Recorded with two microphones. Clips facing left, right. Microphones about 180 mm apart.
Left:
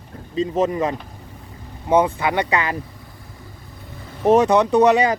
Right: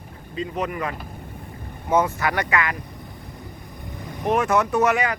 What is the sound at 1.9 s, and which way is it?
Speech, 15° left (ahead or behind).